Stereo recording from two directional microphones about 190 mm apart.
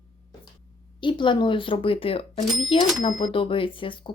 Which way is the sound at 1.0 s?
25° left (ahead or behind).